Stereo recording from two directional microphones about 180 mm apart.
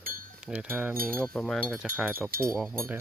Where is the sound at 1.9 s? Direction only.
5° right (ahead or behind).